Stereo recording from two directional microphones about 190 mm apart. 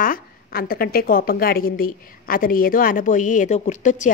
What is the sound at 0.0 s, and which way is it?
A woman's voice, 50° left (ahead or behind).